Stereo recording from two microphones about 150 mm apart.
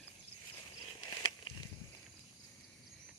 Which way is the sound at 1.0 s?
30° left (ahead or behind).